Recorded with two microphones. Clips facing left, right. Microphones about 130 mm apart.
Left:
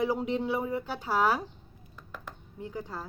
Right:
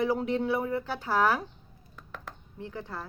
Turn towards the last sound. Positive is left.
turn(degrees=15)  # may be behind; listen again after turning